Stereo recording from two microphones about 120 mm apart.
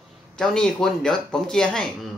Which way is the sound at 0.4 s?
5° left (ahead or behind).